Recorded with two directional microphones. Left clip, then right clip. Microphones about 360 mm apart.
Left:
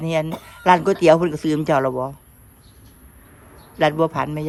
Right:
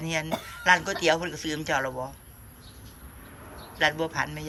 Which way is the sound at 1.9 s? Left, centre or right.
Left.